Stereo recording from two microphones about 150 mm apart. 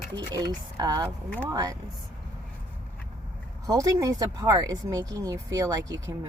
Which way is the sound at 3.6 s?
25° right (ahead or behind).